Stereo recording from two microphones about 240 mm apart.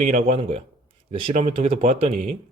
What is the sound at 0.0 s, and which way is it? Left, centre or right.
Speech, right.